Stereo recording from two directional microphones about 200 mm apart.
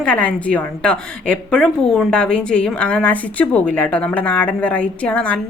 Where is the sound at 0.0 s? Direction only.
5° left (ahead or behind).